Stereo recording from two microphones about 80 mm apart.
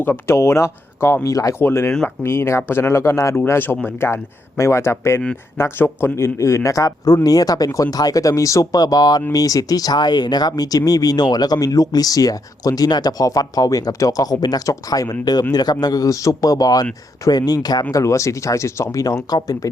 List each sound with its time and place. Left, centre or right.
0.0 s speech: left
1.6 s speech: left
17.9 s speech: left